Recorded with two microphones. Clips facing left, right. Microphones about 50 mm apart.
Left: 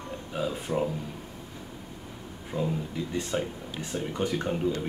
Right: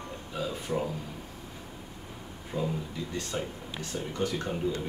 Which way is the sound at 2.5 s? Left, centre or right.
Centre.